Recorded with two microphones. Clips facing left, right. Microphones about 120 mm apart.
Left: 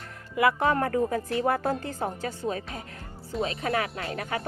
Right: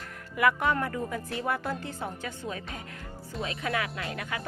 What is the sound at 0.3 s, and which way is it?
Speech, 30° left (ahead or behind).